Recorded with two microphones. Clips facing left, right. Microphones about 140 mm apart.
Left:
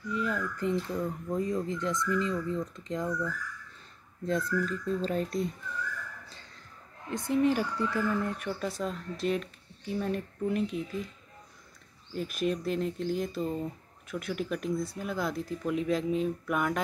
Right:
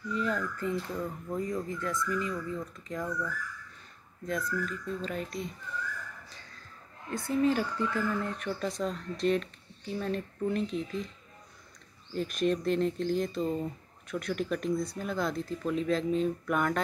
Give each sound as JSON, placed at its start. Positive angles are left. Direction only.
{"t": 0.1, "sound": "a sound", "side_deg": 5}
{"t": 0.6, "sound": "speech", "side_deg": 15}
{"t": 4.3, "sound": "speech", "side_deg": 30}
{"t": 7.2, "sound": "speech", "side_deg": 15}
{"t": 12.1, "sound": "speech", "side_deg": 5}